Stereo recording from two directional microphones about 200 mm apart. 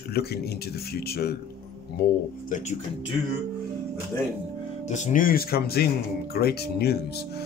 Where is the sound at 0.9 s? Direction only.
50° left (ahead or behind).